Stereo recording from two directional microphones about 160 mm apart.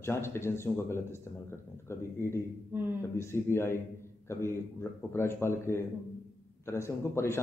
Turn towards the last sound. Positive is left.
turn(degrees=15)  # may be behind; listen again after turning